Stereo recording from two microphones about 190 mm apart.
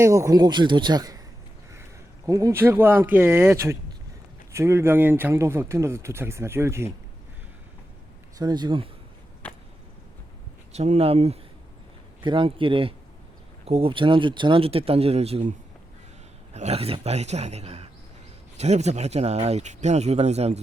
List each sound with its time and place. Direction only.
0.0 s speech: 15° right (ahead or behind)
8.4 s speech: 20° right (ahead or behind)
9.4 s a sound: 10° left (ahead or behind)
10.7 s speech: 35° right (ahead or behind)